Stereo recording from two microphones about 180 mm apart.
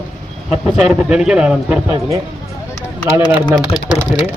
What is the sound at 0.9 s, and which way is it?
A man's voice, 5° right (ahead or behind).